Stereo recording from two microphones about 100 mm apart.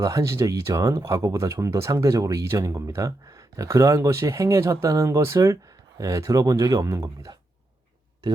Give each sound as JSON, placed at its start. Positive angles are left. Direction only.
{"t": 0.0, "sound": "speech", "side_deg": -30}